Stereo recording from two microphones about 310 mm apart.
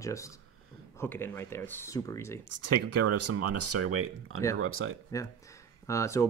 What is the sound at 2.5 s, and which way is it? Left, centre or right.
Speech, right.